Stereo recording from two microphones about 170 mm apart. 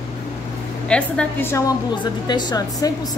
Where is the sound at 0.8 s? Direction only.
5° left (ahead or behind).